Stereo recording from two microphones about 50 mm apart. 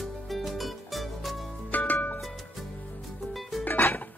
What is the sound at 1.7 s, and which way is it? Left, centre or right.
Music, left.